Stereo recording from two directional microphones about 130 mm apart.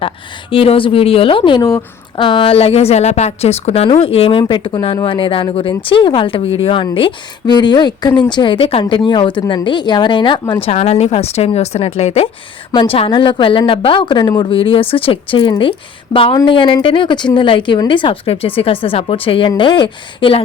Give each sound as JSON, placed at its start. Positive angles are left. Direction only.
{"t": 0.5, "sound": "speech", "side_deg": 45}
{"t": 10.6, "sound": "speech", "side_deg": 50}
{"t": 12.7, "sound": "speech", "side_deg": 45}